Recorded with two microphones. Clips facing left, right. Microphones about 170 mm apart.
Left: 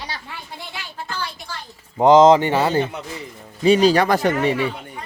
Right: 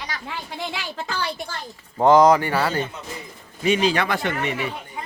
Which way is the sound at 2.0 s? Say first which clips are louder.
Left 3 dB; 20° left (ahead or behind).